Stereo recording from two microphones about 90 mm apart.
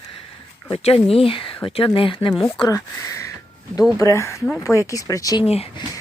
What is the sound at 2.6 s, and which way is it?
Speech, 35° left (ahead or behind).